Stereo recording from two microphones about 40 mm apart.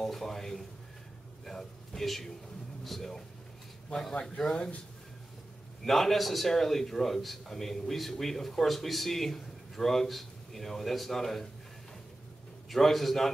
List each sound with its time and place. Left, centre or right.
0.0 s a man's voice: centre
4.1 s speech: left
5.9 s a man's voice: centre
12.6 s a man's voice: centre